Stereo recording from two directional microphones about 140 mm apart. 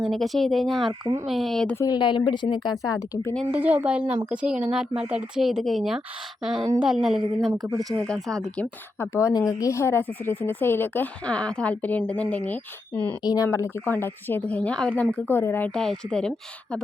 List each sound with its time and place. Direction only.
0.0 s speech: centre (ahead or behind)
1.7 s a woman's voice: 25° left (ahead or behind)
3.5 s speech: 10° right (ahead or behind)
7.5 s speech: 25° right (ahead or behind)
8.0 s speech: 5° left (ahead or behind)
9.0 s speech: 20° left (ahead or behind)
13.2 s speech: 25° left (ahead or behind); by 16.3 s 5° left (ahead or behind)